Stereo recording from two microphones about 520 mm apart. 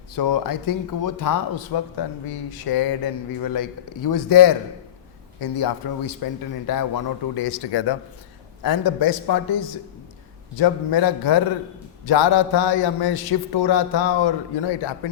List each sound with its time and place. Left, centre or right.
0.2 s a man's voice: left
10.6 s a man's voice: left